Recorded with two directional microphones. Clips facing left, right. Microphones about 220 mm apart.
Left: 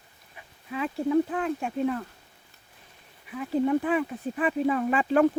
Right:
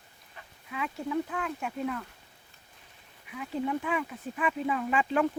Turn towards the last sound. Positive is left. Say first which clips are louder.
# left 5 dB
turn(degrees=40)  # may be behind; listen again after turning